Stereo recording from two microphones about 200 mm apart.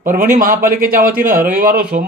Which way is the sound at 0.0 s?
40° right (ahead or behind).